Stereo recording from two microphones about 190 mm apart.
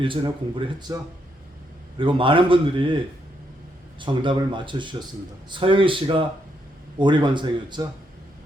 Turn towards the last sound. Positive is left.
turn(degrees=-25)  # may be behind; listen again after turning